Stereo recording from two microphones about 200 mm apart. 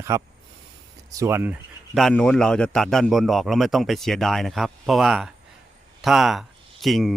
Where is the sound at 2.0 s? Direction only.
5° left (ahead or behind).